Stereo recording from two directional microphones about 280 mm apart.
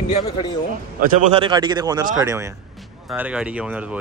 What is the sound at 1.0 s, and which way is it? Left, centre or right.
A man's voice, centre.